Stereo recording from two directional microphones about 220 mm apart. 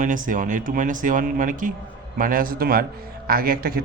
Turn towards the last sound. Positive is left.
turn(degrees=-40)  # may be behind; listen again after turning